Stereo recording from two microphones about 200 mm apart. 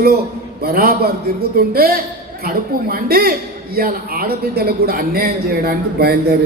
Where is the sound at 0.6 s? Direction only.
50° right (ahead or behind).